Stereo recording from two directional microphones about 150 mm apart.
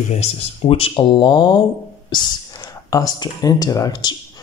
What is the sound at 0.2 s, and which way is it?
Speech, 40° left (ahead or behind).